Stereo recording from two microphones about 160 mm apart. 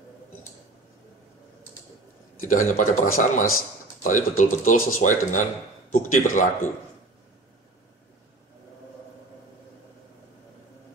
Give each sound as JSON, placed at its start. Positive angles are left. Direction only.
{"t": 2.5, "sound": "speech", "side_deg": 55}